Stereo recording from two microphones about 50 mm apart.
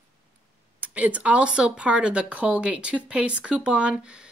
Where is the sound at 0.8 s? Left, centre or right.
Right.